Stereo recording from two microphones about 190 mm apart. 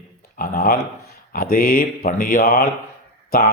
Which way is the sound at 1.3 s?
50° left (ahead or behind).